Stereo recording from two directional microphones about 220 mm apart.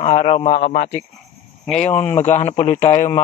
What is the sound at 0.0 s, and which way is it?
Speech, 30° left (ahead or behind).